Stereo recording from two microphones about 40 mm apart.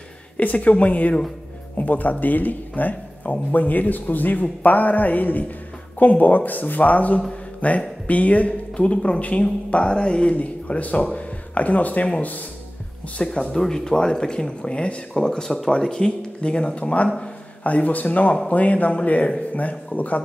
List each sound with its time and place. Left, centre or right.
0.4 s speech: left
10.3 s speech: left
13.2 s speech: centre; by 20.2 s left